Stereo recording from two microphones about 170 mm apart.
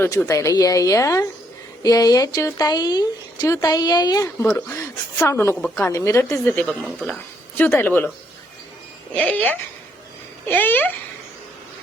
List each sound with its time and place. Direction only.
0.0 s speech: 15° left (ahead or behind)
9.1 s speech: 10° left (ahead or behind)